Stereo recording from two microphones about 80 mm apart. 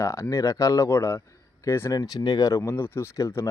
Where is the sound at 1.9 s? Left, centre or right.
Left.